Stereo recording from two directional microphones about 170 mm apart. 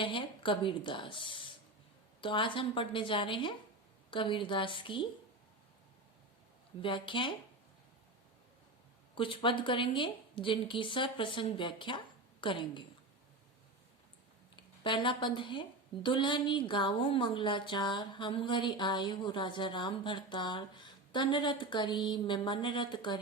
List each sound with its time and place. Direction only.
0.0 s a woman's voice: 30° left (ahead or behind)
6.8 s a woman's voice: 30° left (ahead or behind)
9.1 s a woman's voice: 30° left (ahead or behind)
14.5 s a woman's voice: 30° left (ahead or behind)